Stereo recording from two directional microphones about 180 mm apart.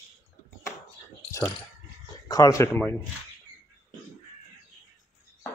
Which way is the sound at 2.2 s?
20° left (ahead or behind).